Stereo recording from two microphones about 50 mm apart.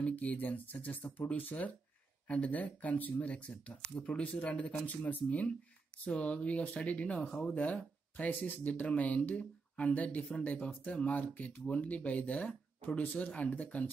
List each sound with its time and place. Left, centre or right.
0.0 s speech: left